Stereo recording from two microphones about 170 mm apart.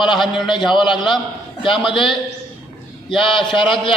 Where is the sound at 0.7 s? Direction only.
25° left (ahead or behind).